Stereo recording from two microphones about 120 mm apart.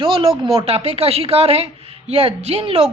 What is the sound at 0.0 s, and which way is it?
Speech, 50° right (ahead or behind).